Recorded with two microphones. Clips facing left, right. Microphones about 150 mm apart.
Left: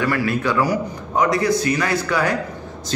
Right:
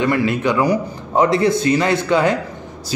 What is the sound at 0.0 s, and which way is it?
A man's voice, 20° right (ahead or behind).